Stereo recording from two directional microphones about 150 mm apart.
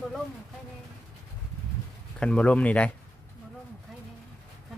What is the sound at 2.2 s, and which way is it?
Speech, 5° left (ahead or behind).